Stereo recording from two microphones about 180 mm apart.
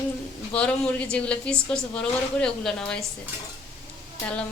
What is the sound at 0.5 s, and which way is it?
A woman's voice, 5° left (ahead or behind).